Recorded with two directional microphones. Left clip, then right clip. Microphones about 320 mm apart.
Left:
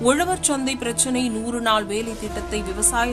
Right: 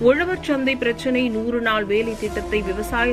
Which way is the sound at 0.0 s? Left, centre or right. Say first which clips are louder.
Right 2 dB; centre.